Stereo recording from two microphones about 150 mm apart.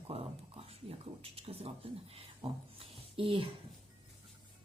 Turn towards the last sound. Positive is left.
turn(degrees=-35)  # may be behind; listen again after turning